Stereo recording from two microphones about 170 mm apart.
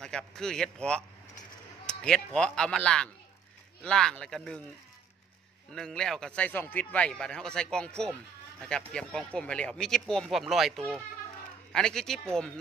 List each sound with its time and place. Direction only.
0.0 s speech: 5° left (ahead or behind)
5.7 s speech: 5° left (ahead or behind)